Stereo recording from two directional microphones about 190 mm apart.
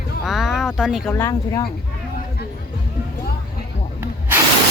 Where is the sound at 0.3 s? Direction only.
Centre (ahead or behind).